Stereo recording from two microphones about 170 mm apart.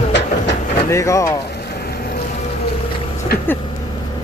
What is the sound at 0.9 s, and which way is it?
Speech, 20° left (ahead or behind).